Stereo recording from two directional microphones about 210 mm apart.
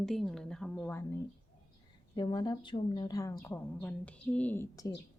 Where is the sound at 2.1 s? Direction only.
20° left (ahead or behind).